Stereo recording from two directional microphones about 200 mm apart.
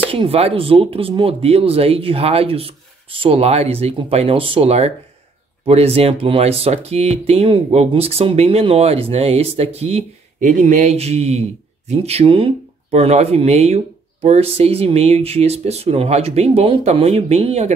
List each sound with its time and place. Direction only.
0.1 s speech: 30° right (ahead or behind)